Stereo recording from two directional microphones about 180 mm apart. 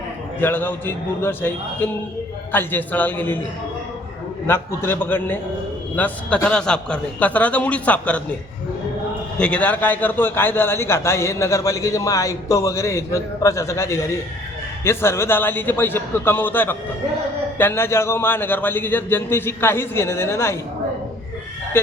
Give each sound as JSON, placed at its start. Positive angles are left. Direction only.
{"t": 0.3, "sound": "a man's voice", "side_deg": 10}
{"t": 4.4, "sound": "a man's voice", "side_deg": 15}
{"t": 9.4, "sound": "a man's voice", "side_deg": 5}